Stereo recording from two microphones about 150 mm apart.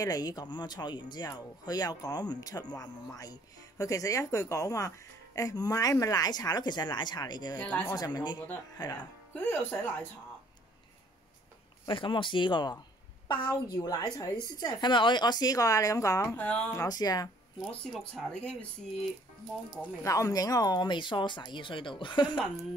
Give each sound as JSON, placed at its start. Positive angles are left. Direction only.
{"t": 0.0, "sound": "speech", "side_deg": 25}
{"t": 7.5, "sound": "speech", "side_deg": 10}
{"t": 7.9, "sound": "speech", "side_deg": 25}
{"t": 8.9, "sound": "speech", "side_deg": 10}
{"t": 11.9, "sound": "speech", "side_deg": 35}
{"t": 16.8, "sound": "speech", "side_deg": 25}
{"t": 17.6, "sound": "speech", "side_deg": 5}
{"t": 20.0, "sound": "speech", "side_deg": 20}